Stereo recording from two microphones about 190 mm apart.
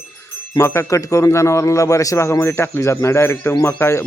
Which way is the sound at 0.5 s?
15° left (ahead or behind).